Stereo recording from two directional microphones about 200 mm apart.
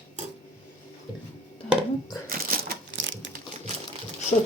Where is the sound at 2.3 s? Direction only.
50° right (ahead or behind).